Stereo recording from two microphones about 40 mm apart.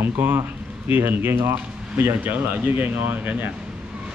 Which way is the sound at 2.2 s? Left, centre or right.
Right.